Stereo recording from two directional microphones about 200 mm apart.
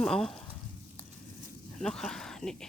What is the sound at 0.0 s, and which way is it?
Speech, 5° left (ahead or behind).